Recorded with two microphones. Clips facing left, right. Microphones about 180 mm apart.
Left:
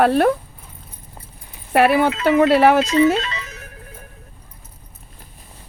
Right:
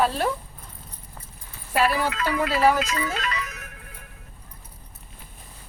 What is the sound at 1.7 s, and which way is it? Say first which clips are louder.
Speech: left 8 dB; 60° left (ahead or behind).